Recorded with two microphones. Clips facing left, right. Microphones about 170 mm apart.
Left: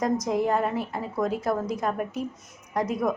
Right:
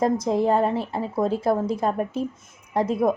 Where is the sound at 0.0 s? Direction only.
30° right (ahead or behind).